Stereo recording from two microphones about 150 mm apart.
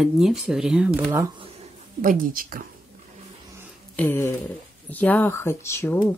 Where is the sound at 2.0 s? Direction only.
65° right (ahead or behind).